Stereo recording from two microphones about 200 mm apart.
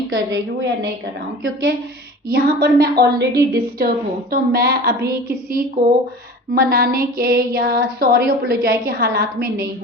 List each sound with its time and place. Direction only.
0.1 s a woman's voice: 65° right (ahead or behind)
2.3 s speech: 50° right (ahead or behind)